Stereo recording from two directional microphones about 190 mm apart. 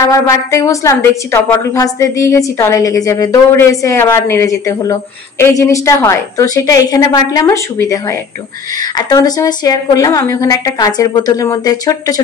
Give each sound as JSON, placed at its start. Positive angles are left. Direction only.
{"t": 0.0, "sound": "a woman's voice", "side_deg": 15}